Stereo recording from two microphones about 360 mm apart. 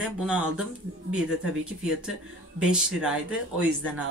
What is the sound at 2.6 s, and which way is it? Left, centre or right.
Speech, centre.